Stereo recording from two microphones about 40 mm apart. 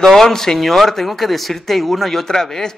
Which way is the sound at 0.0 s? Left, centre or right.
Centre.